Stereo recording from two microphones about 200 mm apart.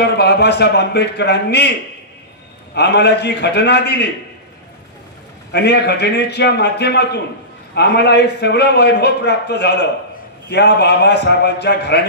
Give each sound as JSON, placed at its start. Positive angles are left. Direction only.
{"t": 0.0, "sound": "a man's voice", "side_deg": 55}
{"t": 2.7, "sound": "a man's voice", "side_deg": 55}
{"t": 5.5, "sound": "a man's voice", "side_deg": 55}